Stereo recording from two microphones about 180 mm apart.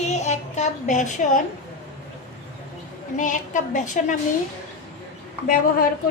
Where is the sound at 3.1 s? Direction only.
45° left (ahead or behind).